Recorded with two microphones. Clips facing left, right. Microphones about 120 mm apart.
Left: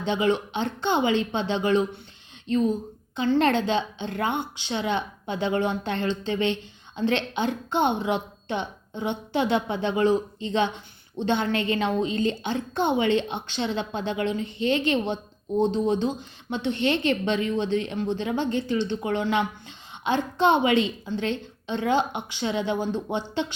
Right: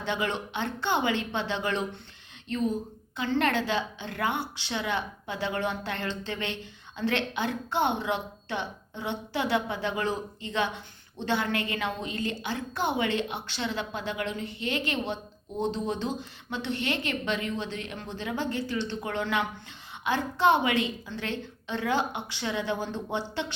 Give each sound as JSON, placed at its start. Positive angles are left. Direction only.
{"t": 0.0, "sound": "a woman's voice", "side_deg": 20}